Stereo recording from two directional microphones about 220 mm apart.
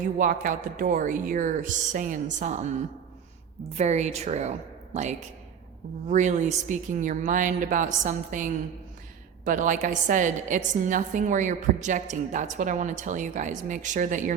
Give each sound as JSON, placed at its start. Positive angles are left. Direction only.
{"t": 0.0, "sound": "a woman's voice", "side_deg": -40}
{"t": 3.8, "sound": "a woman's voice", "side_deg": -30}
{"t": 6.1, "sound": "a woman's voice", "side_deg": -35}